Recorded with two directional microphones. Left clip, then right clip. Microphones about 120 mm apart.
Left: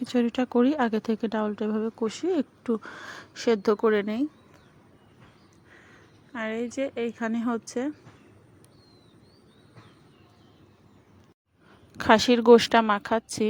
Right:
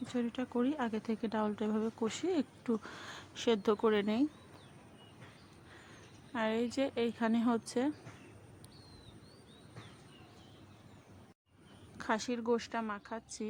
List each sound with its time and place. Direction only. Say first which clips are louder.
0.0 s speech: left 12 dB; 85° left; by 4.3 s 35° left (ahead or behind)
6.3 s a woman's voice: left 4 dB; 15° left (ahead or behind)
11.9 s speech: left 16 dB; 90° left